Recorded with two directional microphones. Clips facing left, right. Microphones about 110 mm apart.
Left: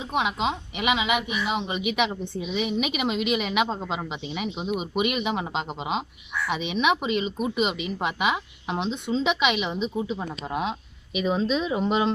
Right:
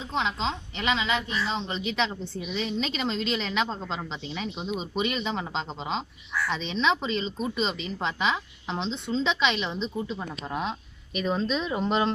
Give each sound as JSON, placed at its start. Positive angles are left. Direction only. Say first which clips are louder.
{"t": 0.1, "sound": "speech", "louder": "left 3 dB", "side_deg": 15}